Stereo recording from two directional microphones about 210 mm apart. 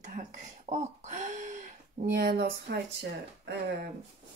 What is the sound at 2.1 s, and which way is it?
Speech, 45° right (ahead or behind).